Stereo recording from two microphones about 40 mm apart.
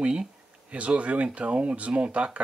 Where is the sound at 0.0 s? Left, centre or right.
Right.